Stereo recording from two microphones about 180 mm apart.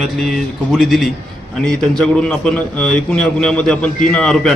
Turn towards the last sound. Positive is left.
turn(degrees=5)  # may be behind; listen again after turning